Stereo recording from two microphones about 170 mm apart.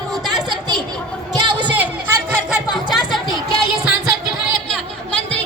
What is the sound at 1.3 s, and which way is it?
Chatter, 25° right (ahead or behind).